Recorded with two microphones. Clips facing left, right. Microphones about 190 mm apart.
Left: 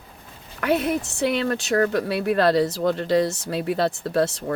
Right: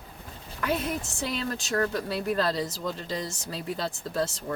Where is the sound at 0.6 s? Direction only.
65° left (ahead or behind).